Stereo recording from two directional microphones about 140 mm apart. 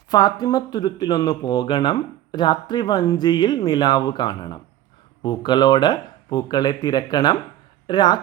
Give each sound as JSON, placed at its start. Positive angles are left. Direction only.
{"t": 0.1, "sound": "speech", "side_deg": 30}